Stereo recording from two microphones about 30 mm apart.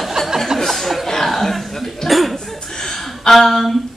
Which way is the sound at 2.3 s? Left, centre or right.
Centre.